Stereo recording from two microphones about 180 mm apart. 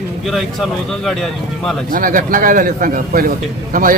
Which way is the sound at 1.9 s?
50° right (ahead or behind).